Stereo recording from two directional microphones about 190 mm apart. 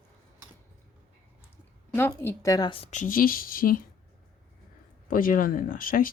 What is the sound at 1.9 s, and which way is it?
A woman's voice, 10° left (ahead or behind).